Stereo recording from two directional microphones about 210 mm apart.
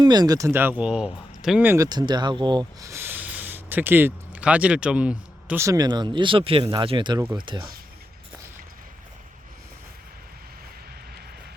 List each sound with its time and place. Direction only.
0.0 s speech: 20° right (ahead or behind)